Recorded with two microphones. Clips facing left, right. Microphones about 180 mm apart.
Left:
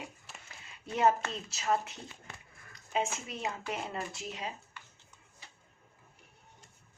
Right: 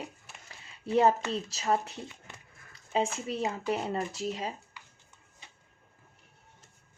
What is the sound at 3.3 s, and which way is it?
Speech, 35° right (ahead or behind).